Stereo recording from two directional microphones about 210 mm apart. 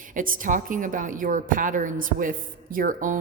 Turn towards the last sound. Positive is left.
turn(degrees=-40)  # may be behind; listen again after turning